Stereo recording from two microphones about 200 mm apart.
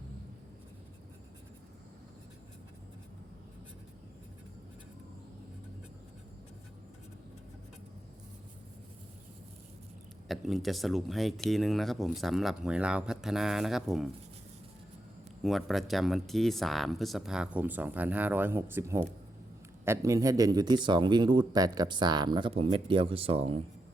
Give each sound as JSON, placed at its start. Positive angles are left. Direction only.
{"t": 10.2, "sound": "speech", "side_deg": 0}
{"t": 15.4, "sound": "speech", "side_deg": 0}